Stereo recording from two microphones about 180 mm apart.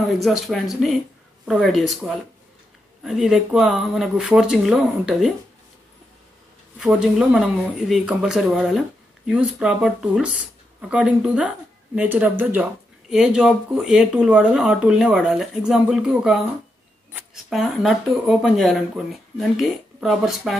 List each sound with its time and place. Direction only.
0.2 s speech: centre (ahead or behind)
6.8 s speech: 5° right (ahead or behind)